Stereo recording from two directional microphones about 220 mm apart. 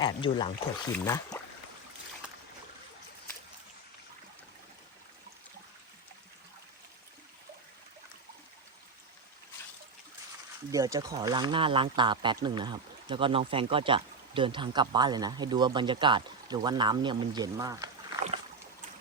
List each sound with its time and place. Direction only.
0.0 s speech: 20° left (ahead or behind)
10.7 s speech: 15° right (ahead or behind)